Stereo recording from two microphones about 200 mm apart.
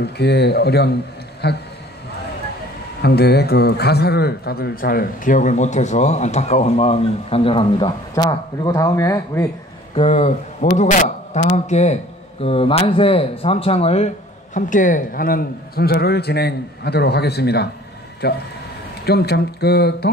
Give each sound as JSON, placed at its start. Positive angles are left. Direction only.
{"t": 0.0, "sound": "speech", "side_deg": 55}
{"t": 3.0, "sound": "a man's voice", "side_deg": 55}
{"t": 9.9, "sound": "a man's voice", "side_deg": 35}